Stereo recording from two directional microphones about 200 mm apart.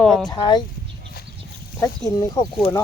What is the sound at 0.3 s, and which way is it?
Speech, 20° left (ahead or behind).